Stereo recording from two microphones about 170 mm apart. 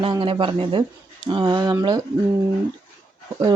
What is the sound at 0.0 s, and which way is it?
Speech, 30° right (ahead or behind).